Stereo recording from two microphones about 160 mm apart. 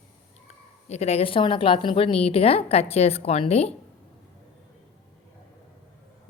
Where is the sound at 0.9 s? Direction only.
40° left (ahead or behind).